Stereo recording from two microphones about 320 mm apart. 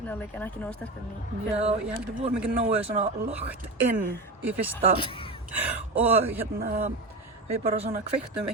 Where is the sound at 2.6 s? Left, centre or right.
Centre.